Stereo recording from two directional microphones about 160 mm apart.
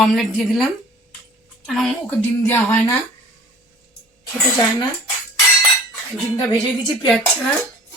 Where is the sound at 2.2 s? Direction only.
15° left (ahead or behind).